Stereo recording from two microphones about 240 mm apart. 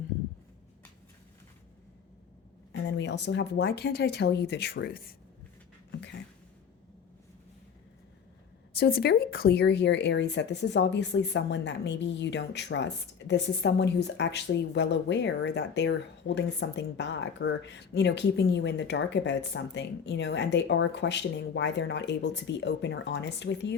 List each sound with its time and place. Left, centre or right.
3.0 s speech: left
8.7 s speech: left